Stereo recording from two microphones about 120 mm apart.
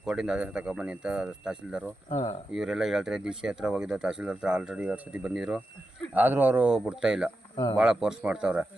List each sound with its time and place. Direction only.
0.0 s speech: 5° right (ahead or behind)
2.0 s speech: 40° left (ahead or behind)
2.5 s speech: 5° right (ahead or behind)
6.1 s speech: 15° right (ahead or behind)